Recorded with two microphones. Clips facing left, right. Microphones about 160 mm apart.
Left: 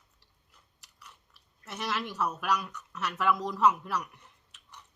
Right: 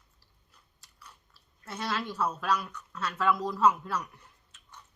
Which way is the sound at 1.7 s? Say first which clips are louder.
Right 1 dB; 15° left (ahead or behind).